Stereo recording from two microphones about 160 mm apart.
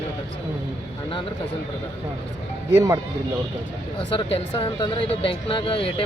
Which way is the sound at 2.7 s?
20° right (ahead or behind).